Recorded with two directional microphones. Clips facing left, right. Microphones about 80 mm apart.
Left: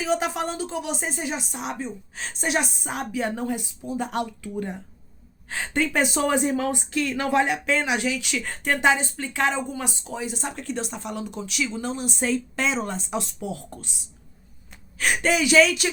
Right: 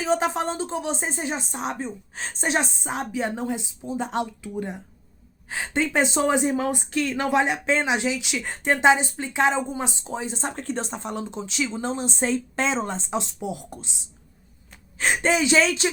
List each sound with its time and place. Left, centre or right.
0.0 s a woman's voice: right